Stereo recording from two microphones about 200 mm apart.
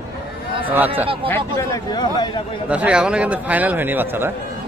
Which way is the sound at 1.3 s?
15° left (ahead or behind).